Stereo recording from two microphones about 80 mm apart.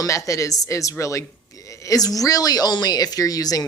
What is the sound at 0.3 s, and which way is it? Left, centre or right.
Speech, left.